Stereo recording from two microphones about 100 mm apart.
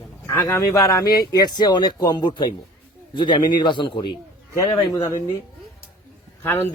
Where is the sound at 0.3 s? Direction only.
30° left (ahead or behind); by 4.1 s 55° left (ahead or behind).